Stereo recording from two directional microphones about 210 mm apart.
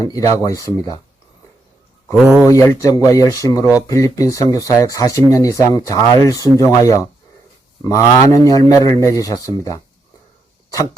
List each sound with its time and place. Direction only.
0.0 s speech: 15° left (ahead or behind)
2.1 s speech: 5° right (ahead or behind)
2.5 s speech: 15° left (ahead or behind)